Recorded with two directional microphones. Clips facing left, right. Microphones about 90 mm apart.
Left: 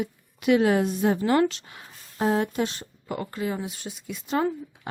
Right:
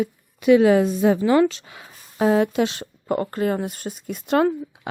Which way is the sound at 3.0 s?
45° right (ahead or behind).